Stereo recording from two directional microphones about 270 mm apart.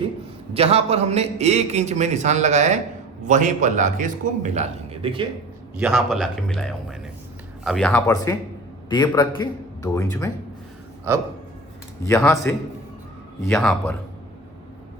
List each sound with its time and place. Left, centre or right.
0.5 s a man's voice: right
5.8 s a man's voice: centre
12.0 s a man's voice: centre
13.4 s speech: centre